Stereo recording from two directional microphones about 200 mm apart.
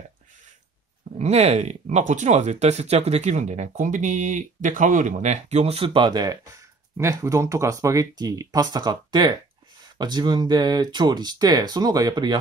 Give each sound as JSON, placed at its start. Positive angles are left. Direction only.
{"t": 1.1, "sound": "speech", "side_deg": -35}